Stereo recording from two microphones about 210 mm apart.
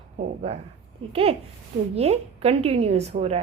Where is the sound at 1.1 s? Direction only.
30° right (ahead or behind).